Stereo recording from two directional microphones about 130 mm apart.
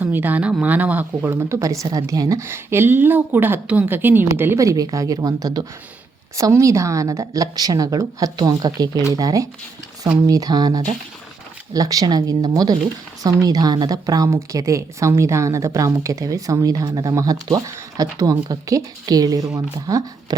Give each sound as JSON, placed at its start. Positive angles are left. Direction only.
{"t": 0.0, "sound": "a woman's voice", "side_deg": -15}